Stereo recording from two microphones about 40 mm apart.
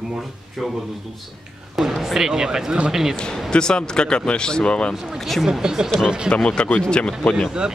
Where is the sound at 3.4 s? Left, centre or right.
Left.